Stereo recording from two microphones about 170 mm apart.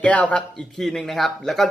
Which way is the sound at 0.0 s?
10° left (ahead or behind).